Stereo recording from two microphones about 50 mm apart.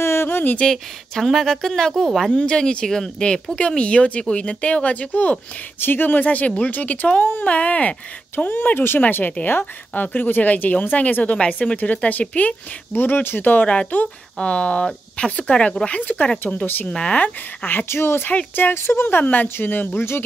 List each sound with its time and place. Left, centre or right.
0.0 s a sound: left
0.6 s a woman's voice: centre
2.3 s speech: centre
5.8 s speech: left
7.4 s speech: left
8.3 s speech: left
12.9 s speech: left
13.7 s speech: left
17.8 s speech: left
18.6 s speech: left
19.9 s speech: left